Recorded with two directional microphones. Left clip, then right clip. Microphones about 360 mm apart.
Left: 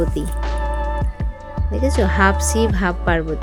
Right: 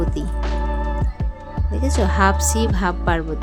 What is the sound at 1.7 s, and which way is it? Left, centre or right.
Speech, centre.